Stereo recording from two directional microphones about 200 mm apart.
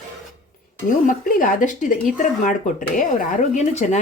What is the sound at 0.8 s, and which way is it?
Speech, 40° left (ahead or behind).